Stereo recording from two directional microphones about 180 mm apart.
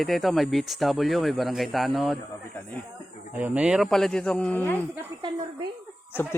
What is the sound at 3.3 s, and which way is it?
Speech, 10° right (ahead or behind).